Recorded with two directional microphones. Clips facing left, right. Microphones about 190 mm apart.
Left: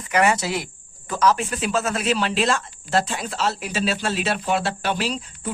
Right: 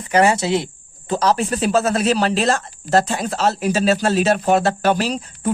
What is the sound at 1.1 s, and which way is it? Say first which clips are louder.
Speech: right 3 dB; 35° right (ahead or behind).